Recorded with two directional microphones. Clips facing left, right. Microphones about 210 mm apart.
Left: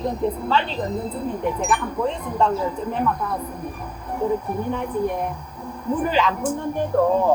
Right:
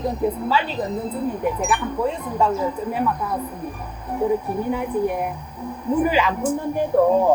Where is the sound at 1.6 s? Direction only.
5° right (ahead or behind).